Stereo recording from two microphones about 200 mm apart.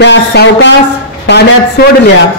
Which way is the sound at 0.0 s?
60° left (ahead or behind).